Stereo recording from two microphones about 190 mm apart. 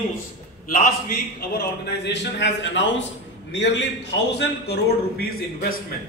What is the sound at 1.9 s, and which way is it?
A man's voice, 65° left (ahead or behind).